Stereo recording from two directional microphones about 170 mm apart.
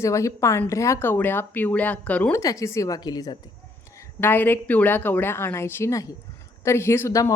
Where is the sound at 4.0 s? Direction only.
10° left (ahead or behind).